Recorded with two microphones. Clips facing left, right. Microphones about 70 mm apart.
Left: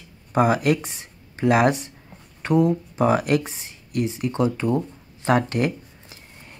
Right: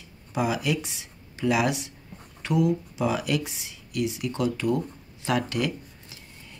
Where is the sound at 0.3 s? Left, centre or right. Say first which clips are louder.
Left 7 dB; left.